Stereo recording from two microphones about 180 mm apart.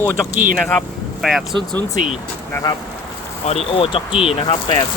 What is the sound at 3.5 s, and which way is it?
Speech, 35° left (ahead or behind).